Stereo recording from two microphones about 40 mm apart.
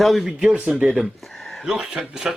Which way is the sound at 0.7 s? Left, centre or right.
Right.